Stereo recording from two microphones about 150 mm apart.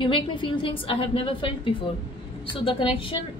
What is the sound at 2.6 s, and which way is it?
Speech, 35° left (ahead or behind).